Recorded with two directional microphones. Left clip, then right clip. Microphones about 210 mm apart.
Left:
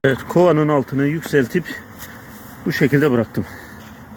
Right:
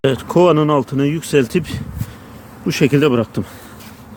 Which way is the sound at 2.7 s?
25° right (ahead or behind).